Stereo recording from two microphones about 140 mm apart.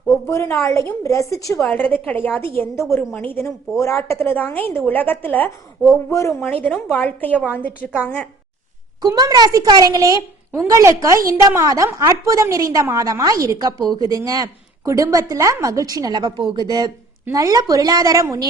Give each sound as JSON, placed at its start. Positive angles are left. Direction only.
{"t": 0.3, "sound": "a woman's voice", "side_deg": 20}
{"t": 1.6, "sound": "a woman's voice", "side_deg": 10}
{"t": 6.5, "sound": "a woman's voice", "side_deg": 10}
{"t": 7.3, "sound": "a woman's voice", "side_deg": -10}
{"t": 8.0, "sound": "a woman's voice", "side_deg": 10}
{"t": 9.0, "sound": "a woman's voice", "side_deg": -25}